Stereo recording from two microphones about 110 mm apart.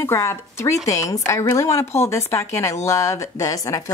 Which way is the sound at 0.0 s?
25° left (ahead or behind).